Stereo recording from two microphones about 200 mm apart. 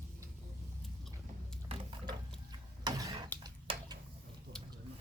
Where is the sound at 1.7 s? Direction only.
25° right (ahead or behind).